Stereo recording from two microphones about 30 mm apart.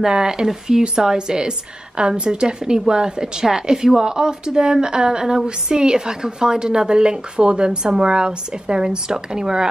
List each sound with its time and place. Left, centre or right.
0.0 s a woman's voice: right